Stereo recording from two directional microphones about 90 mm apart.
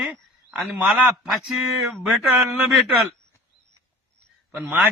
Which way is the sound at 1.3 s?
Centre (ahead or behind).